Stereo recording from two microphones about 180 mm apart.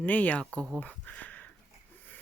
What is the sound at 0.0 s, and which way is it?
Speech, 10° left (ahead or behind).